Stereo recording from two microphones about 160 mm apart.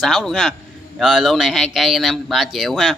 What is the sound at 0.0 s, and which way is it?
A man's voice, centre (ahead or behind).